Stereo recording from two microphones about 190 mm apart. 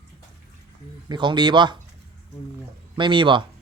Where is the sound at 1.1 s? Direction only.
25° right (ahead or behind).